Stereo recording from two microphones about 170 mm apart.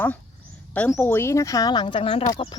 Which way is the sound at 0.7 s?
10° left (ahead or behind).